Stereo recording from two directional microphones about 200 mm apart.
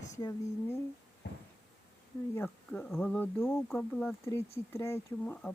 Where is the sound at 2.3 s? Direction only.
10° left (ahead or behind).